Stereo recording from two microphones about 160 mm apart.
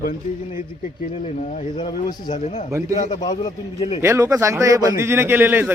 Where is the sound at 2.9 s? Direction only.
50° left (ahead or behind).